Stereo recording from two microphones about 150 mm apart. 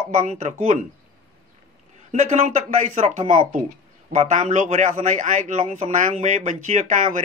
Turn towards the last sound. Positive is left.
turn(degrees=-55)  # may be behind; listen again after turning